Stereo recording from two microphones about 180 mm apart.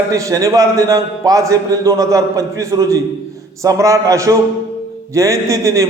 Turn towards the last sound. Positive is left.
turn(degrees=-20)  # may be behind; listen again after turning